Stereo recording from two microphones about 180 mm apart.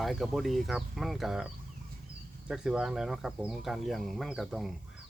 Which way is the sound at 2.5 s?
5° right (ahead or behind).